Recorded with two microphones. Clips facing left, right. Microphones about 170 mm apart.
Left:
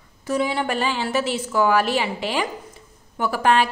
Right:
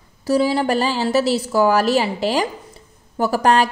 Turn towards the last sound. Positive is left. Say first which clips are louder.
# right 3 dB
turn(degrees=-40)  # may be behind; listen again after turning